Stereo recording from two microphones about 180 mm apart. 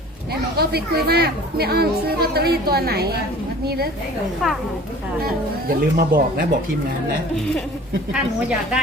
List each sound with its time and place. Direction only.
0.5 s speech: 60° right (ahead or behind)
5.2 s speech: 55° right (ahead or behind)
8.1 s speech: 5° right (ahead or behind)